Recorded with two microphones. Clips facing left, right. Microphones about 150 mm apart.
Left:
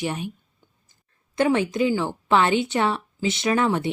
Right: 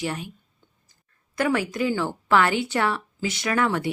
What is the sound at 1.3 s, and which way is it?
Speech, 25° left (ahead or behind).